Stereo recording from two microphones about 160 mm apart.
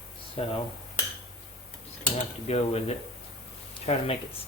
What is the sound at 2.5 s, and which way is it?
Speech, 40° left (ahead or behind).